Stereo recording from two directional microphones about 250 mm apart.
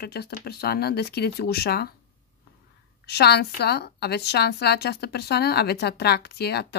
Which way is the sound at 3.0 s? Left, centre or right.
Left.